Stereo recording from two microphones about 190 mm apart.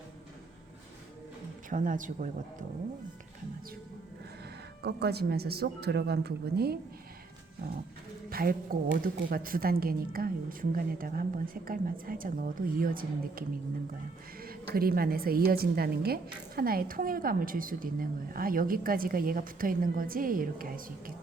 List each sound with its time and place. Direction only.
1.7 s a woman's voice: 45° right (ahead or behind)
4.8 s speech: 60° right (ahead or behind)
8.3 s a woman's voice: 50° right (ahead or behind)
14.7 s a woman's voice: 50° right (ahead or behind)